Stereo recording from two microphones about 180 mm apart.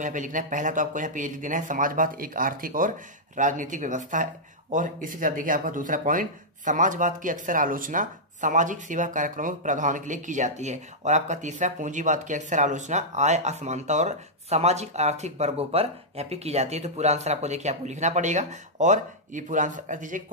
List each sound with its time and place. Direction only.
0.0 s speech: 45° right (ahead or behind)